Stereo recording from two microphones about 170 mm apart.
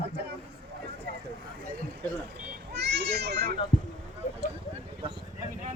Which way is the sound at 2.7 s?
80° right.